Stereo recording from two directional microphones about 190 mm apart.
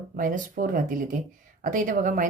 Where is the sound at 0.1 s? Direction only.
45° right (ahead or behind).